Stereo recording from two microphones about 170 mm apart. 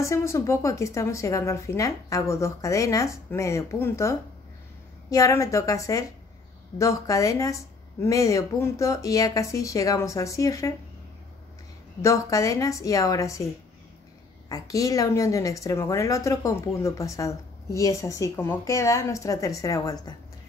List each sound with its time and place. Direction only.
0.0 s a woman's voice: 15° left (ahead or behind)
5.1 s a woman's voice: 20° left (ahead or behind)
12.0 s a woman's voice: 20° left (ahead or behind)
14.5 s a woman's voice: 20° left (ahead or behind)